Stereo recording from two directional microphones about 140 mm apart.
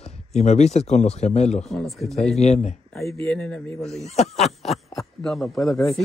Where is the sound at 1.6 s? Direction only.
Centre (ahead or behind).